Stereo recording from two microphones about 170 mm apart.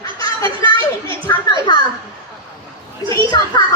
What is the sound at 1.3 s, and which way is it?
Children playing, 20° left (ahead or behind).